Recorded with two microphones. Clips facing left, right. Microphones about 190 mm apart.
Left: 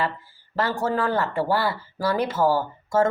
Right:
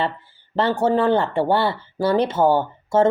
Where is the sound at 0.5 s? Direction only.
25° right (ahead or behind).